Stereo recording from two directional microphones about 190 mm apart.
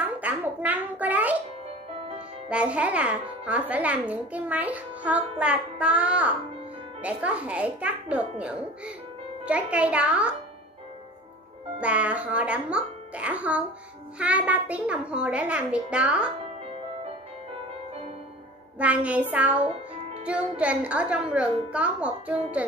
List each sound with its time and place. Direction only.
0.0 s a sound: 10° right (ahead or behind)
2.5 s a child's voice: 5° right (ahead or behind)
11.8 s a child's voice: 5° right (ahead or behind)
18.8 s a child's voice: 5° right (ahead or behind)
19.6 s music: 35° right (ahead or behind)
20.2 s a child's voice: 5° right (ahead or behind)